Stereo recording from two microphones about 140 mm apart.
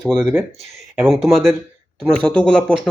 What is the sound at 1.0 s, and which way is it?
Speech, centre (ahead or behind).